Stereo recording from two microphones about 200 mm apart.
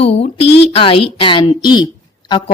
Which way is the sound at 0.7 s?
25° left (ahead or behind).